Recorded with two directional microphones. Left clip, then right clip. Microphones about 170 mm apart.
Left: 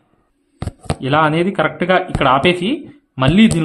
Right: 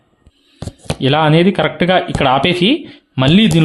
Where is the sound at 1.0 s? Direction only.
40° right (ahead or behind).